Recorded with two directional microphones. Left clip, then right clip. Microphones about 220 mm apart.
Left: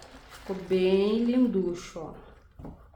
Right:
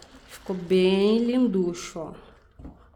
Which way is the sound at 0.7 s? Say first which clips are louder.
Right 3 dB; 50° right (ahead or behind).